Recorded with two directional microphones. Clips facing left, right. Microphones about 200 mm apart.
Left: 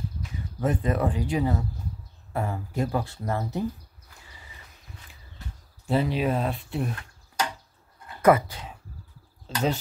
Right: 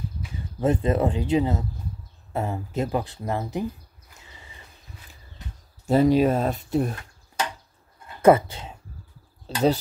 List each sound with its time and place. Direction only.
0.6 s speech: 25° right (ahead or behind)
4.2 s a sound: 25° right (ahead or behind)
5.9 s speech: 40° right (ahead or behind)
8.2 s speech: 25° right (ahead or behind)